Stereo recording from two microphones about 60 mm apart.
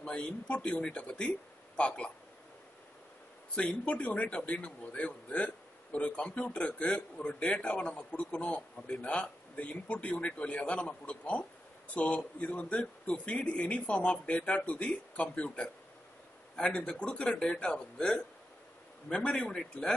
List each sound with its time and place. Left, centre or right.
0.0 s speech: centre
3.5 s a man's voice: centre